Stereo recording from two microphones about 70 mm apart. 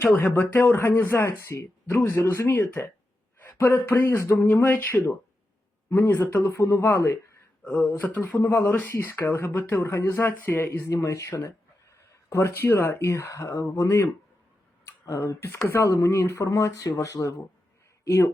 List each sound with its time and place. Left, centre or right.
0.0 s speech: left
2.6 s speech: left
7.8 s speech: left
10.8 s speech: left
13.3 s speech: left
14.8 s tick: left
15.6 s speech: left
16.5 s speech: left
18.0 s speech: left